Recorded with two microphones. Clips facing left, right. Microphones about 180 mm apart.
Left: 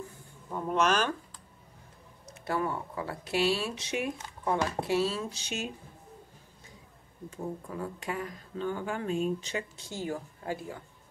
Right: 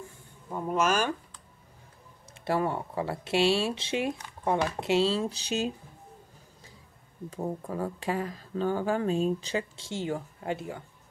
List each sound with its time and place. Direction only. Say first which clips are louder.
0.5 s speech: even; 10° right (ahead or behind)
2.3 s speech: right 3 dB; 30° right (ahead or behind)
7.2 s speech: right 4 dB; 40° right (ahead or behind); by 10.8 s 25° right (ahead or behind)